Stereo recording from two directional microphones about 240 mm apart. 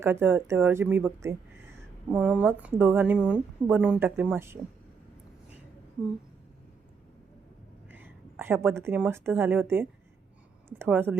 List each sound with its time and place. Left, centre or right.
0.0 s a woman's voice: centre
7.9 s a woman's voice: centre